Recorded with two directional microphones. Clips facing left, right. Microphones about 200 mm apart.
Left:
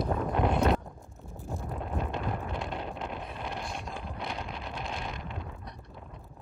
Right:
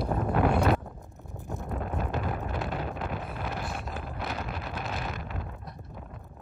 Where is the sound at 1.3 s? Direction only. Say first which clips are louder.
Right 1 dB; 20° right (ahead or behind).